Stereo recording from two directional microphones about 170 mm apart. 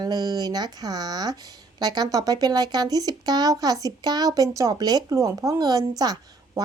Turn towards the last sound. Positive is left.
turn(degrees=-20)  # may be behind; listen again after turning